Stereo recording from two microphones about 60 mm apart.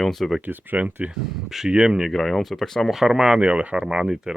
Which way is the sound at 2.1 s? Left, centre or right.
Centre.